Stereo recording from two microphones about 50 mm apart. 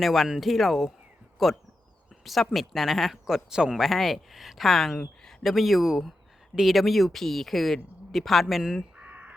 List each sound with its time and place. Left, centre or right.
0.0 s speech: centre
3.8 s speech: centre